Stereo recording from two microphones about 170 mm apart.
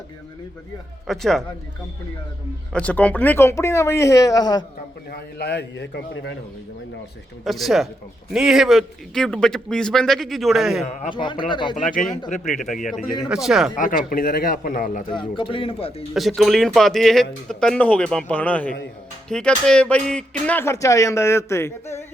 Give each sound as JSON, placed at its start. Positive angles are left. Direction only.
{"t": 1.0, "sound": "a man's voice", "side_deg": 0}
{"t": 2.7, "sound": "speech", "side_deg": 10}
{"t": 5.1, "sound": "a man's voice", "side_deg": 75}
{"t": 7.4, "sound": "a man's voice", "side_deg": 0}
{"t": 11.1, "sound": "speech", "side_deg": 25}
{"t": 12.3, "sound": "speech", "side_deg": 45}
{"t": 13.3, "sound": "a man's voice", "side_deg": -5}
{"t": 13.7, "sound": "speech", "side_deg": 50}
{"t": 14.1, "sound": "speech", "side_deg": 60}
{"t": 15.4, "sound": "speech", "side_deg": 30}
{"t": 16.1, "sound": "a man's voice", "side_deg": 0}